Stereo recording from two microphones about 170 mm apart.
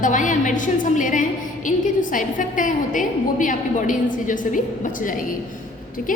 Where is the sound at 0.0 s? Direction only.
50° left (ahead or behind).